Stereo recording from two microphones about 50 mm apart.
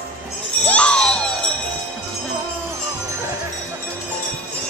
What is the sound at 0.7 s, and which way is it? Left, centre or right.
Music, left.